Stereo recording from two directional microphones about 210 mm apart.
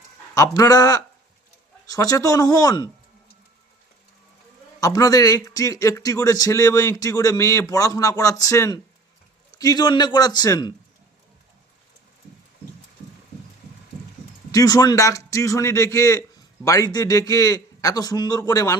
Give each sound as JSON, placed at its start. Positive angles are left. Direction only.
{"t": 0.3, "sound": "a man's voice", "side_deg": 15}
{"t": 4.8, "sound": "a man's voice", "side_deg": 15}
{"t": 14.5, "sound": "a man's voice", "side_deg": 15}